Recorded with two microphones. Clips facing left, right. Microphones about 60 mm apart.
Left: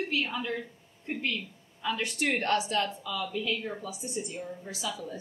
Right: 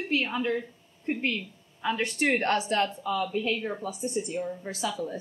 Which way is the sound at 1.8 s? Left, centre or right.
Right.